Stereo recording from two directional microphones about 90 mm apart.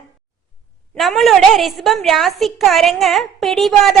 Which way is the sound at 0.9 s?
Centre (ahead or behind).